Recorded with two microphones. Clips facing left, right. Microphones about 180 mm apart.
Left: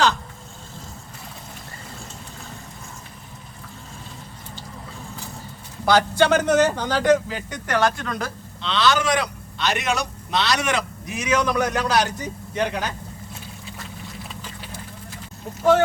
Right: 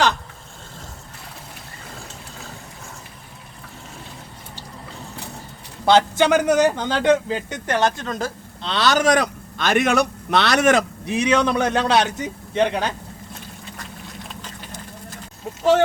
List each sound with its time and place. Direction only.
5.8 s speech: 25° right (ahead or behind)
8.6 s a man's voice: 40° right (ahead or behind)
11.0 s speech: 30° right (ahead or behind)
14.3 s vehicle: 10° left (ahead or behind)